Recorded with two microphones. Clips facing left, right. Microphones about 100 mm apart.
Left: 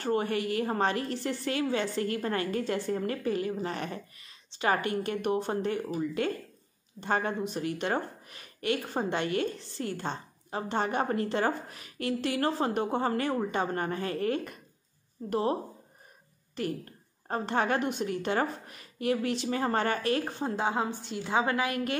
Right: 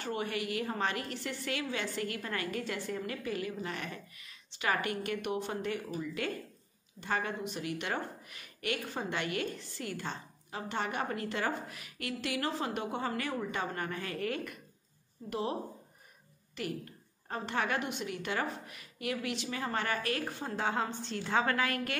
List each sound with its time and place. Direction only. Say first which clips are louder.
0.0 s a woman's voice: left 7 dB; 40° left (ahead or behind)
16.6 s a woman's voice: left 5 dB; 35° left (ahead or behind); by 21.9 s 15° left (ahead or behind)